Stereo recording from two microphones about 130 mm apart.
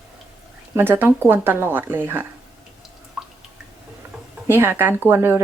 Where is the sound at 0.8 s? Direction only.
15° right (ahead or behind).